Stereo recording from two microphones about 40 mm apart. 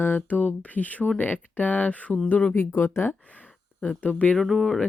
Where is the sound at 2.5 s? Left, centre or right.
Left.